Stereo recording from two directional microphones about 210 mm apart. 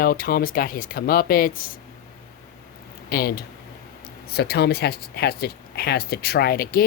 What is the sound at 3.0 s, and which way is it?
Speech, 45° left (ahead or behind).